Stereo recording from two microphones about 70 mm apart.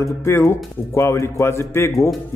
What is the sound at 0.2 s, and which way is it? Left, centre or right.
Speech, left.